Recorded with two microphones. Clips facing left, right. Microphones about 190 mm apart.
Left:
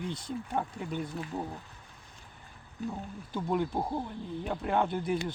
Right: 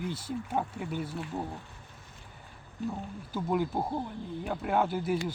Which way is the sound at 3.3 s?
5° right (ahead or behind).